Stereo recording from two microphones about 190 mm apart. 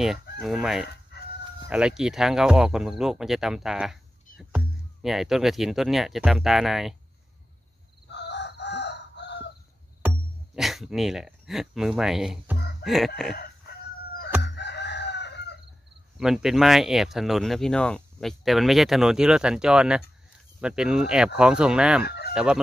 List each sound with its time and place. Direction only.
0.0 s speech: centre (ahead or behind)
1.1 s chicken: 55° left (ahead or behind)
1.7 s speech: 5° right (ahead or behind)
8.1 s chicken: 65° left (ahead or behind)
10.0 s speech: centre (ahead or behind)
12.8 s chicken: centre (ahead or behind)
14.4 s chicken: 65° left (ahead or behind)
16.2 s speech: centre (ahead or behind)
22.0 s fowl: 55° left (ahead or behind)
22.3 s chicken: 5° right (ahead or behind)